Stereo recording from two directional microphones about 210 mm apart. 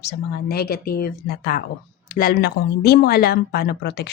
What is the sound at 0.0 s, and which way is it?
A woman's voice, 50° left (ahead or behind).